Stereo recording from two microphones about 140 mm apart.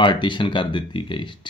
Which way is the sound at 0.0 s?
35° left (ahead or behind).